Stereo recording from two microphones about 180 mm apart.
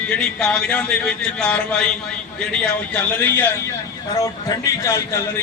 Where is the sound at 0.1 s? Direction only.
5° left (ahead or behind).